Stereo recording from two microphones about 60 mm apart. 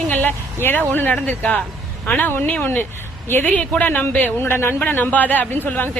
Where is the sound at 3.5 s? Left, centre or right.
Left.